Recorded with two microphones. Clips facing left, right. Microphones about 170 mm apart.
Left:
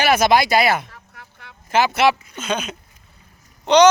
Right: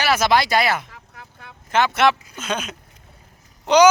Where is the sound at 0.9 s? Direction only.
20° right (ahead or behind).